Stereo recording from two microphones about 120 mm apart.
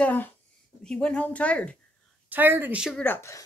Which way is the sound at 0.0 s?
15° left (ahead or behind).